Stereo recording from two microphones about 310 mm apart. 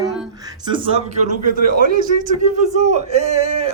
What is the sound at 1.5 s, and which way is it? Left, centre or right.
A man's voice, right.